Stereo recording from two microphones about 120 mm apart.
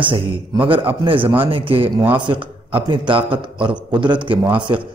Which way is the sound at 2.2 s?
45° right (ahead or behind).